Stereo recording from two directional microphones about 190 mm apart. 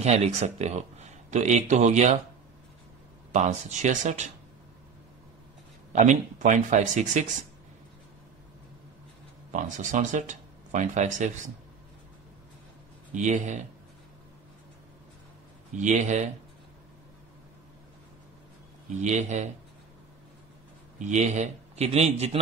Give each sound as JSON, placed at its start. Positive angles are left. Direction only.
{"t": 0.0, "sound": "speech", "side_deg": -35}
{"t": 3.3, "sound": "speech", "side_deg": -40}
{"t": 5.9, "sound": "speech", "side_deg": -40}
{"t": 9.5, "sound": "speech", "side_deg": -40}
{"t": 13.1, "sound": "speech", "side_deg": -40}
{"t": 15.7, "sound": "speech", "side_deg": -40}
{"t": 18.9, "sound": "speech", "side_deg": -40}
{"t": 21.0, "sound": "speech", "side_deg": -40}